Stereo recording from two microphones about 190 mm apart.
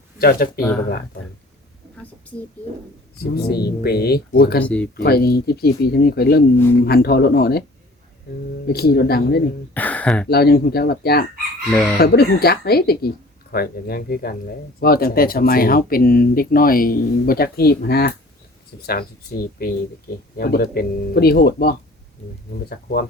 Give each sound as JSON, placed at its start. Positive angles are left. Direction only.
{"t": 0.2, "sound": "speech", "side_deg": 50}
{"t": 3.2, "sound": "speech", "side_deg": 55}
{"t": 4.6, "sound": "speech", "side_deg": 5}
{"t": 5.0, "sound": "speech", "side_deg": 55}
{"t": 8.6, "sound": "speech", "side_deg": 55}
{"t": 9.7, "sound": "speech", "side_deg": 10}
{"t": 10.2, "sound": "speech", "side_deg": 55}
{"t": 11.7, "sound": "speech", "side_deg": 10}
{"t": 11.9, "sound": "speech", "side_deg": 55}